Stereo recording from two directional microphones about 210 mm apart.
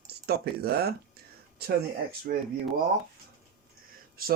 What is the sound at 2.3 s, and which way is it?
Speech, 45° right (ahead or behind).